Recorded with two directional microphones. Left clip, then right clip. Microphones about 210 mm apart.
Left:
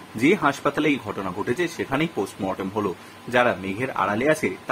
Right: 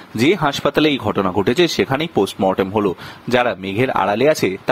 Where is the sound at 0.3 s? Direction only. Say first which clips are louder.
Right 4 dB; 40° right (ahead or behind).